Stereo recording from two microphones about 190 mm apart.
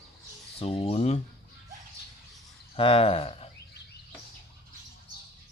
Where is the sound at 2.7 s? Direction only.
30° left (ahead or behind).